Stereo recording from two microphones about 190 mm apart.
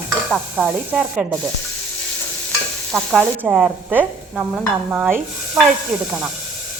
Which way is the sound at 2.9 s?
Centre (ahead or behind).